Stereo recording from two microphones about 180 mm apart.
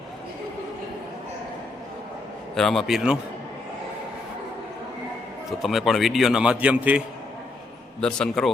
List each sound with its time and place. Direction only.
2.6 s a man's voice: centre (ahead or behind)
5.5 s a man's voice: centre (ahead or behind)
8.0 s a man's voice: 5° left (ahead or behind)